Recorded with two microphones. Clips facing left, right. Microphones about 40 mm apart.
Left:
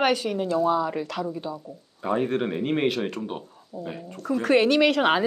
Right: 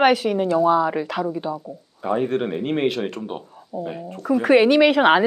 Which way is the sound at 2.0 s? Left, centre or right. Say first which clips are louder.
Right 3 dB; centre.